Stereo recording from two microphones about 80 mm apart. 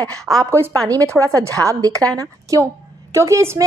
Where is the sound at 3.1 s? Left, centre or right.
Right.